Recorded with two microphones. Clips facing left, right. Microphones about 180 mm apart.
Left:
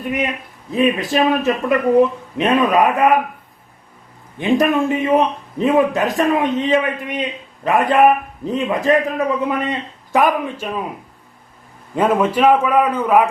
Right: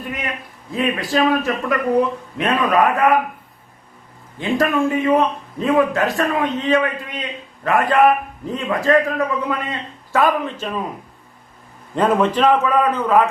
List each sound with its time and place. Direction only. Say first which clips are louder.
0.0 s a man's voice: left 6 dB; 20° left (ahead or behind)
4.4 s a man's voice: left 3 dB; 20° left (ahead or behind)
11.9 s a man's voice: left 1 dB; 10° left (ahead or behind)